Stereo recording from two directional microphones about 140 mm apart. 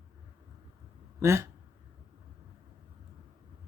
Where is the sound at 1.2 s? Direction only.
20° right (ahead or behind).